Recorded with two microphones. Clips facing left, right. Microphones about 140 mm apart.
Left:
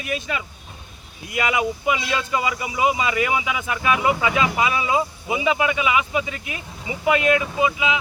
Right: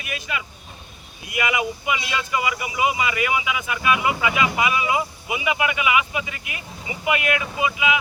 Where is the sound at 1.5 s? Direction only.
30° left (ahead or behind).